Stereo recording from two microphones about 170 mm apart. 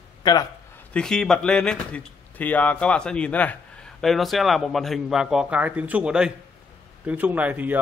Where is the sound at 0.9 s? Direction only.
5° left (ahead or behind).